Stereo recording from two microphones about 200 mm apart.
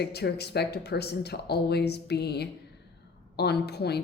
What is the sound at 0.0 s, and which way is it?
A woman's voice, 55° left (ahead or behind).